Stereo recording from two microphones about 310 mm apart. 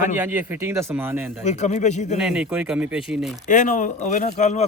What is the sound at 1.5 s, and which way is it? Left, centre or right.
Speech, left.